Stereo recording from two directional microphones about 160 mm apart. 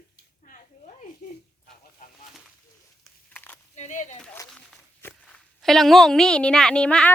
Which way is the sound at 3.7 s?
45° left (ahead or behind).